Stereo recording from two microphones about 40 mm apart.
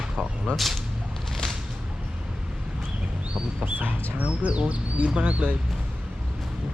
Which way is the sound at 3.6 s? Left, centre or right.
Right.